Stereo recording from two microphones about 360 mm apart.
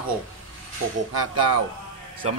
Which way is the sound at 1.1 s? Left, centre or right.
Right.